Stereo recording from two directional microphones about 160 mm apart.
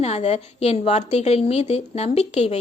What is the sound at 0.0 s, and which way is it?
A woman's voice, 45° left (ahead or behind).